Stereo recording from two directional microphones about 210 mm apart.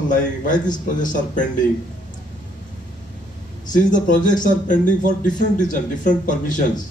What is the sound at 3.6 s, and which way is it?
A man's voice, 40° left (ahead or behind).